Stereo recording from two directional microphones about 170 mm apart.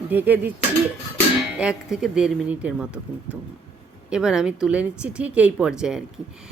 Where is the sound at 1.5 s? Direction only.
5° right (ahead or behind).